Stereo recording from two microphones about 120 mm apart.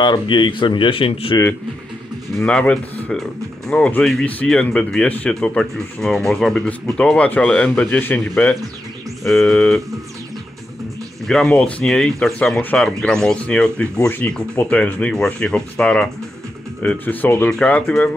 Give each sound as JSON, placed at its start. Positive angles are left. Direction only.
{"t": 0.0, "sound": "speech", "side_deg": 40}
{"t": 2.3, "sound": "speech", "side_deg": 10}
{"t": 9.2, "sound": "speech", "side_deg": 0}
{"t": 11.2, "sound": "speech", "side_deg": 5}